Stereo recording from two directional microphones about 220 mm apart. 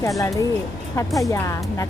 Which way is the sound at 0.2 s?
15° left (ahead or behind).